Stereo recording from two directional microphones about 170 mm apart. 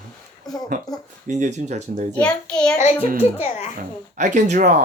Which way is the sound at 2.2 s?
5° left (ahead or behind).